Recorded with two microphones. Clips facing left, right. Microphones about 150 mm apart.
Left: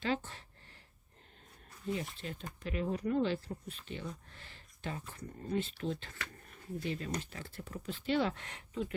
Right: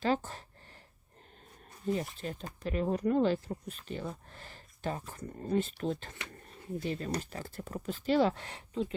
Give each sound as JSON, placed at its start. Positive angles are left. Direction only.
{"t": 0.0, "sound": "speech", "side_deg": -40}
{"t": 1.9, "sound": "speech", "side_deg": -40}